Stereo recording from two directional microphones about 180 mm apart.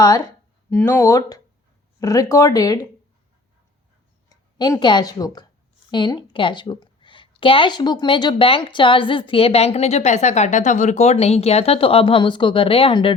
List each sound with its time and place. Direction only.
0.7 s a woman's voice: 15° left (ahead or behind)
4.3 s a woman's voice: 20° left (ahead or behind)